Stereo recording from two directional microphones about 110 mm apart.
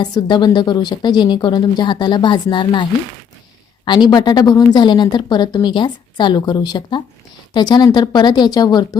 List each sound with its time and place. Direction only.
0.0 s speech: 40° left (ahead or behind)
3.8 s a woman's voice: 45° left (ahead or behind)